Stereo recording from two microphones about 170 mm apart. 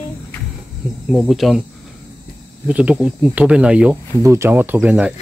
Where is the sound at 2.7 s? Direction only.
5° right (ahead or behind).